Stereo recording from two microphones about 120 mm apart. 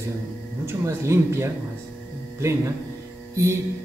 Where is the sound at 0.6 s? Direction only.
20° right (ahead or behind).